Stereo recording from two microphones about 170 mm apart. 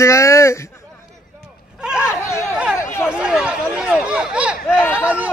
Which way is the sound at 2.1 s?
15° left (ahead or behind).